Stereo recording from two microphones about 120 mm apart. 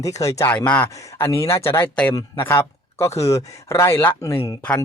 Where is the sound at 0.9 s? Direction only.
25° left (ahead or behind).